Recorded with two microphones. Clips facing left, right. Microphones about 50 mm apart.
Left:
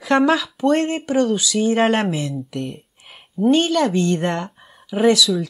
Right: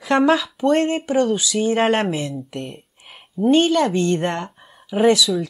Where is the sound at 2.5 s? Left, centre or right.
Centre.